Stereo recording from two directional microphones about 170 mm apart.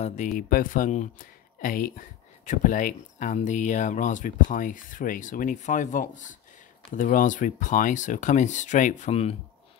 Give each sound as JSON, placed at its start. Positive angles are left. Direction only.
{"t": 0.0, "sound": "speech", "side_deg": 45}